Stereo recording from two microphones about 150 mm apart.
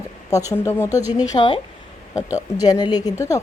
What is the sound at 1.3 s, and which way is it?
Speech, 35° left (ahead or behind).